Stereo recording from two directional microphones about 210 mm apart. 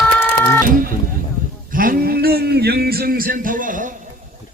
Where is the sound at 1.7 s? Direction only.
40° right (ahead or behind).